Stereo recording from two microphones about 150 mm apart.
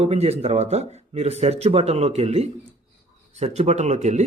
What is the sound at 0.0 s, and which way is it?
Speech, 45° right (ahead or behind).